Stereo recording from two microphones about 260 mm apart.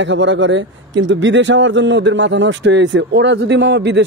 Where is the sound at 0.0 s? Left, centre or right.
Right.